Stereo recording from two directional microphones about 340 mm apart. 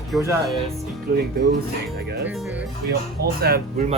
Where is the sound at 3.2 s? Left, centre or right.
Right.